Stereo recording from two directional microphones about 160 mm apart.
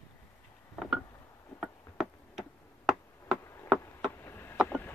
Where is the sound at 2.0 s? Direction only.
Centre (ahead or behind).